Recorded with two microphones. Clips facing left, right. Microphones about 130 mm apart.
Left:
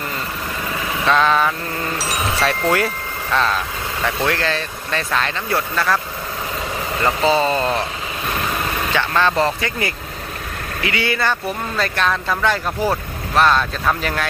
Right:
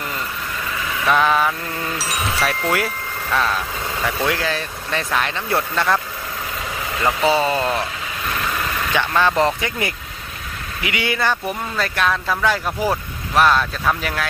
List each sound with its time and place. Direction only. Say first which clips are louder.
1.0 s speech: left 1 dB; 15° right (ahead or behind)
2.0 s chime: left 2 dB; centre (ahead or behind)
3.3 s speech: left 1 dB; 5° right (ahead or behind)
7.0 s speech: left 1 dB; 10° right (ahead or behind)
8.9 s speech: even; 15° right (ahead or behind)